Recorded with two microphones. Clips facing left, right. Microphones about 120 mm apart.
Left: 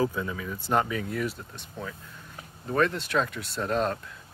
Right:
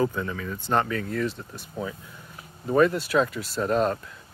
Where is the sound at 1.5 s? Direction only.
5° right (ahead or behind).